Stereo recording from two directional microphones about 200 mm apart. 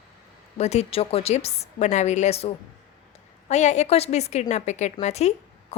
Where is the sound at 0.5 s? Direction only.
30° left (ahead or behind).